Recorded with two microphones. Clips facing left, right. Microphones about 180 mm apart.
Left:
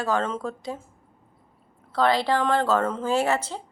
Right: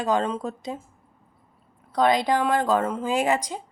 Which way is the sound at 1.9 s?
15° right (ahead or behind).